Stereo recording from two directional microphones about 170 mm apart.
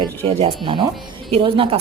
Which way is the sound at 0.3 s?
35° right (ahead or behind).